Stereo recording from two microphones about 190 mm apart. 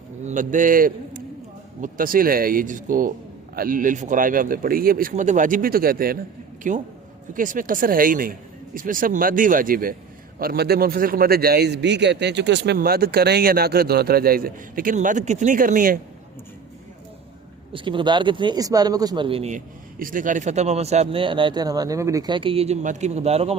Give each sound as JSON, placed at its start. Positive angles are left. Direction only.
{"t": 0.3, "sound": "a man's voice", "side_deg": -40}
{"t": 17.7, "sound": "speech", "side_deg": -25}